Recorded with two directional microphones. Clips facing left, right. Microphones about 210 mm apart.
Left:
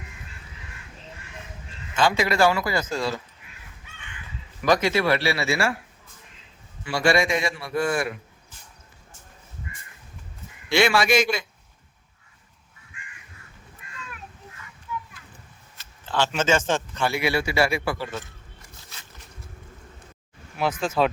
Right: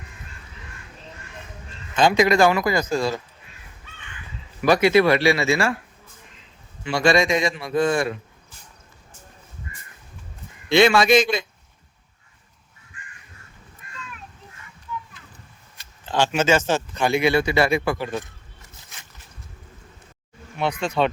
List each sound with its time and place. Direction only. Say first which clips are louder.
2.0 s speech: right 4 dB; 20° right (ahead or behind)
4.6 s speech: right 5 dB; 15° right (ahead or behind)
6.8 s a man's voice: right 3 dB; 20° right (ahead or behind)
10.7 s a man's voice: right 5 dB; 20° right (ahead or behind)
15.8 s speech: right 3 dB; 15° right (ahead or behind)
20.6 s speech: right 1 dB; centre (ahead or behind)